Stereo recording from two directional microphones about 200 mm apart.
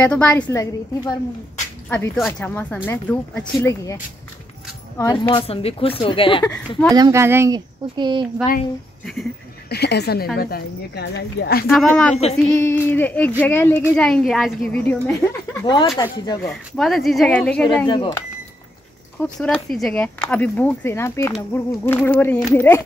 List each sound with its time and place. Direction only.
0.0 s a woman's voice: 5° left (ahead or behind)
1.9 s a woman's voice: 5° left (ahead or behind); by 6.4 s 25° left (ahead or behind)
6.9 s speech: 15° right (ahead or behind)
9.0 s speech: centre (ahead or behind)
9.7 s speech: 55° left (ahead or behind)
11.7 s a woman's voice: 5° left (ahead or behind); by 15.9 s 20° left (ahead or behind)
16.4 s speech: centre (ahead or behind)
17.8 s speech: 20° left (ahead or behind)
19.4 s a woman's voice: 5° left (ahead or behind)